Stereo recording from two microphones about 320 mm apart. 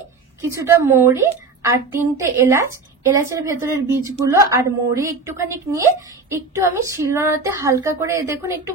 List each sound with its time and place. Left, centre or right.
0.7 s a woman's voice: centre